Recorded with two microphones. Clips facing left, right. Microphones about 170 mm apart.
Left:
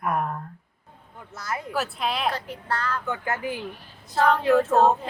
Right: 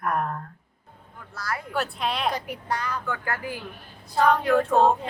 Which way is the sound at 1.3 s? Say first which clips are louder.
Even; 20° left (ahead or behind).